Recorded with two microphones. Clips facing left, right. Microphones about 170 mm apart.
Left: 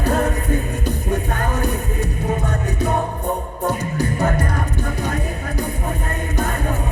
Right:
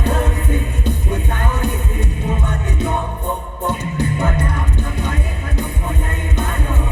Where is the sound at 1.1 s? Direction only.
40° left (ahead or behind).